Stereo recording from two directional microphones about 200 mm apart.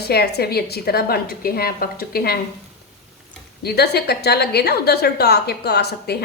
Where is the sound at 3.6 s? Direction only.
55° left (ahead or behind).